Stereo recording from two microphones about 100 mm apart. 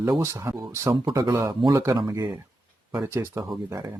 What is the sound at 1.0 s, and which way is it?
Speech, 40° right (ahead or behind).